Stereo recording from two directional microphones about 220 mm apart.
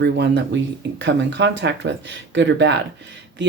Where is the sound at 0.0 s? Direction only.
50° right (ahead or behind).